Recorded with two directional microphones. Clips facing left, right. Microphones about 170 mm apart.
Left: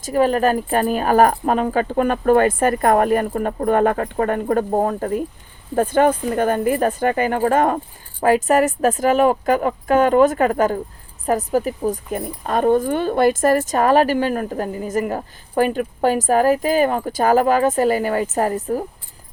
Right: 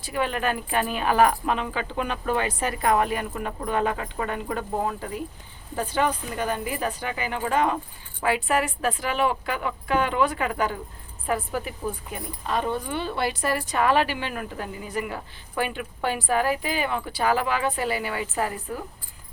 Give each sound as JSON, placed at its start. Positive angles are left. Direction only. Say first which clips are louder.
{"t": 0.0, "sound": "a woman's voice", "louder": "left 10 dB", "side_deg": 40}